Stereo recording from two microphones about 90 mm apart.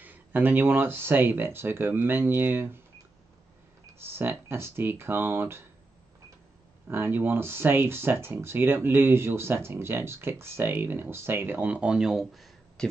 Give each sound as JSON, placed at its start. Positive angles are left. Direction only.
{"t": 0.0, "sound": "speech", "side_deg": -20}
{"t": 4.0, "sound": "speech", "side_deg": -25}
{"t": 6.9, "sound": "speech", "side_deg": -25}
{"t": 11.7, "sound": "speech", "side_deg": -10}